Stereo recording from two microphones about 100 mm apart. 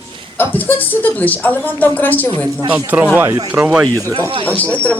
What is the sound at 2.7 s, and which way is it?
Speech, 20° right (ahead or behind).